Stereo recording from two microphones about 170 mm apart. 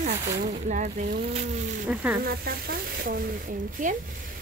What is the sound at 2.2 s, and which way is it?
Speech, 60° right (ahead or behind).